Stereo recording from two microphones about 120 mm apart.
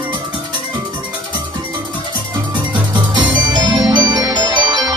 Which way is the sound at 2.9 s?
35° right (ahead or behind).